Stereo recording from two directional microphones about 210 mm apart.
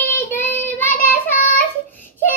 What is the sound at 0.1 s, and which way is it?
Child singing, 10° left (ahead or behind).